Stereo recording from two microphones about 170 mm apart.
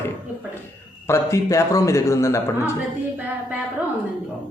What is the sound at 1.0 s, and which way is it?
A man's voice, 15° left (ahead or behind).